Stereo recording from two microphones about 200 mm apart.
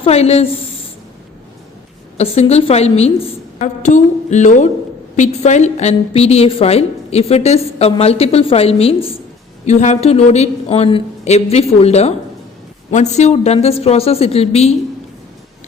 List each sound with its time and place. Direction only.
0.0 s a woman's voice: 30° left (ahead or behind)
2.1 s a woman's voice: 30° left (ahead or behind)